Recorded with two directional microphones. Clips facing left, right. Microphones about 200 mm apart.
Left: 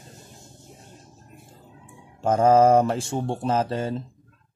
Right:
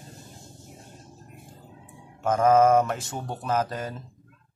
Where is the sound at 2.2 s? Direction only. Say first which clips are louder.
Left 2 dB; 30° left (ahead or behind).